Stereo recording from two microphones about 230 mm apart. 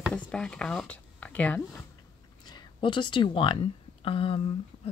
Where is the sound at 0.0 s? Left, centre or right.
Centre.